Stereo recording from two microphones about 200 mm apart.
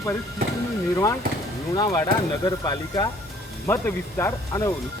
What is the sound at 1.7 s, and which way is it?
Speech, 20° left (ahead or behind).